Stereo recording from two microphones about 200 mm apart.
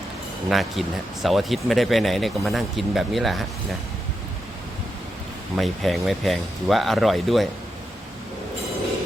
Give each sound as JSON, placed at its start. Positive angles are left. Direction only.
{"t": 0.5, "sound": "speech", "side_deg": 0}
{"t": 5.5, "sound": "speech", "side_deg": 0}